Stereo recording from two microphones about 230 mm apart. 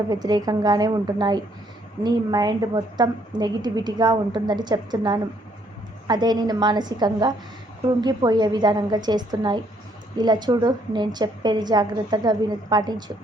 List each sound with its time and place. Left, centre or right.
0.1 s a woman's voice: centre